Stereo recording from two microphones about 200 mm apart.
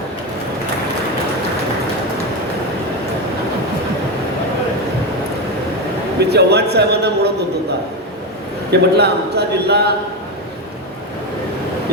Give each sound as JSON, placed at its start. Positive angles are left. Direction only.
{"t": 6.1, "sound": "a man's voice", "side_deg": -55}
{"t": 8.8, "sound": "a man's voice", "side_deg": -55}